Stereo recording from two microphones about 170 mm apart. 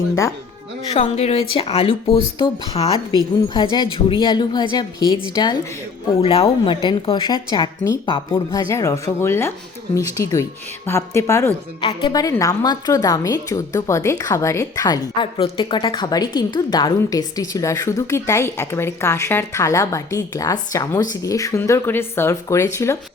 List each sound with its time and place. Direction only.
0.9 s a woman's voice: 40° left (ahead or behind)
6.1 s a woman's voice: 35° left (ahead or behind)
8.7 s a woman's voice: 15° left (ahead or behind)
11.8 s a woman's voice: 30° left (ahead or behind)